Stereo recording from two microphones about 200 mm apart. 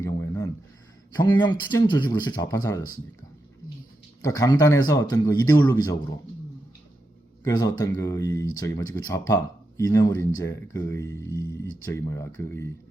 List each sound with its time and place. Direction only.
0.0 s a sound: 15° left (ahead or behind)
1.1 s speech: 20° left (ahead or behind)
4.2 s speech: 15° left (ahead or behind)
7.4 s speech: 15° left (ahead or behind)